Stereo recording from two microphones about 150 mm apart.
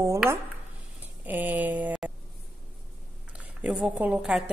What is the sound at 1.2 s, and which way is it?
Speech, 10° right (ahead or behind).